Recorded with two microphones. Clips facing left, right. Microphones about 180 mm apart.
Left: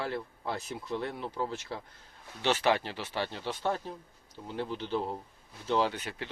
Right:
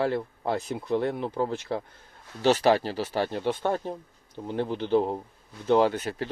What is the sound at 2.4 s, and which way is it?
Speech, 40° right (ahead or behind).